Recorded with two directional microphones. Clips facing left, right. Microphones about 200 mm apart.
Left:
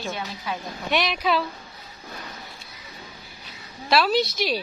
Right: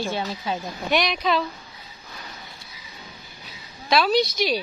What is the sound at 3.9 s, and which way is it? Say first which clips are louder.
Speech: right 1 dB; 5° left (ahead or behind).